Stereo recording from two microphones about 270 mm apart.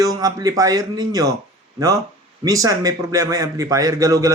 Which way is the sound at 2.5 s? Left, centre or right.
Centre.